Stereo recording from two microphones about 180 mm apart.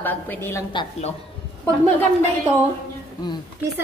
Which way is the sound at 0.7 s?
30° left (ahead or behind).